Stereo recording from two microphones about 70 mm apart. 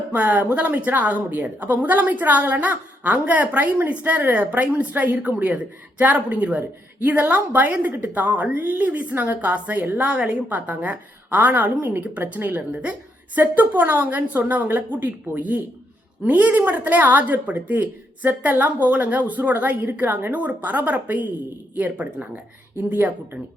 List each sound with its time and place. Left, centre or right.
0.1 s a woman's voice: right